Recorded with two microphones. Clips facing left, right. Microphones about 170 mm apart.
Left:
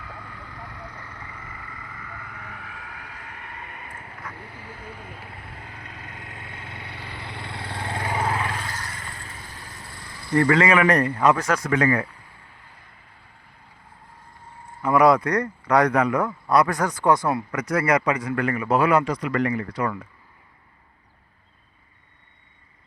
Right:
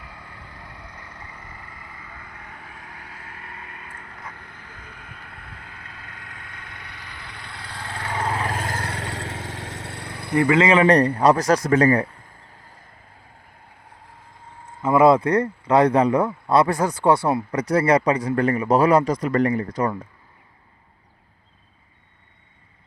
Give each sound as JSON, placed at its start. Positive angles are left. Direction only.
{"t": 0.8, "sound": "vehicle", "side_deg": -10}
{"t": 2.6, "sound": "vehicle", "side_deg": -35}
{"t": 5.6, "sound": "vehicle", "side_deg": 40}
{"t": 6.1, "sound": "vehicle", "side_deg": 20}
{"t": 7.9, "sound": "vehicle", "side_deg": 10}
{"t": 8.4, "sound": "vehicle", "side_deg": -40}
{"t": 10.4, "sound": "a man's voice", "side_deg": -20}
{"t": 14.8, "sound": "a man's voice", "side_deg": -25}